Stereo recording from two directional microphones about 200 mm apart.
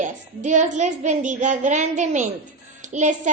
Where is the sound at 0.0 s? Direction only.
35° right (ahead or behind).